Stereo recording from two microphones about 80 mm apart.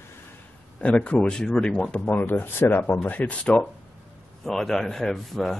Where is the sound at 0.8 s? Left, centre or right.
Centre.